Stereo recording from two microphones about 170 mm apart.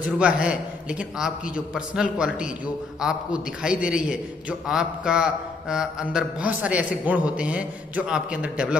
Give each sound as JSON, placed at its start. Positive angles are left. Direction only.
{"t": 0.0, "sound": "a man's voice", "side_deg": -5}